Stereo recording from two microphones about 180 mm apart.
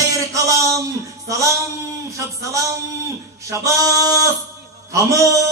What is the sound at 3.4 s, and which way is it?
A man's voice, 15° right (ahead or behind).